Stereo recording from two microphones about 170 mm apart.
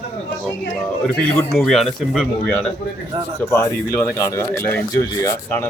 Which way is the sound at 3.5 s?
15° left (ahead or behind).